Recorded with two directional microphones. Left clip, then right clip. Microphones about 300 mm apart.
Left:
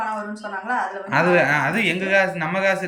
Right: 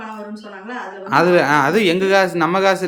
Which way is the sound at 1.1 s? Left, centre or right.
Centre.